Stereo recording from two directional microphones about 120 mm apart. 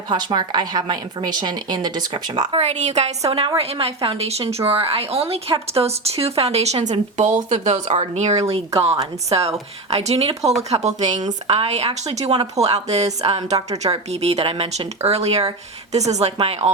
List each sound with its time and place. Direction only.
0.1 s a woman's voice: 35° right (ahead or behind)
2.6 s speech: 70° right (ahead or behind)
3.2 s a woman's voice: 50° right (ahead or behind); by 11.2 s 75° right (ahead or behind)
11.4 s speech: 55° right (ahead or behind)